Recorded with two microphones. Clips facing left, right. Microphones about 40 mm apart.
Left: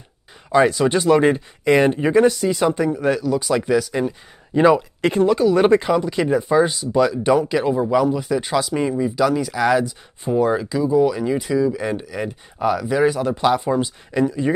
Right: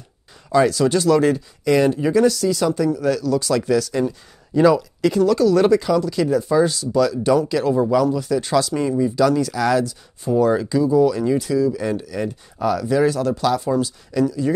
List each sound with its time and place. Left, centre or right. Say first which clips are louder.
0.5 s speech: even; left
4.6 s speech: even; left